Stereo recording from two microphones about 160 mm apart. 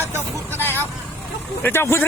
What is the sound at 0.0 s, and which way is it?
Vehicle, 15° right (ahead or behind).